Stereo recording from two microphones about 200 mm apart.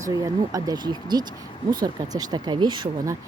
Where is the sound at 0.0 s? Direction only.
15° right (ahead or behind).